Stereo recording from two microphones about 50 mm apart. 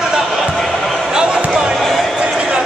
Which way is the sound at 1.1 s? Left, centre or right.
Centre.